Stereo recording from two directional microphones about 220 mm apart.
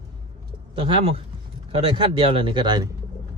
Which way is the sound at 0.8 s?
25° right (ahead or behind).